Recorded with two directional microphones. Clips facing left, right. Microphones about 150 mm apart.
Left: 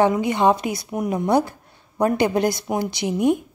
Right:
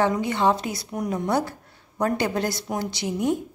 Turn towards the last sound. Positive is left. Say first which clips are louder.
# left 5 dB
turn(degrees=15)  # may be behind; listen again after turning